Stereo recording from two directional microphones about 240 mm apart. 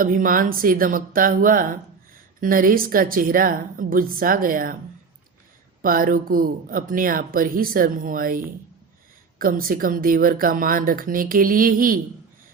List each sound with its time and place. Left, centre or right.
0.0 s speech: right
5.8 s speech: right
9.4 s speech: right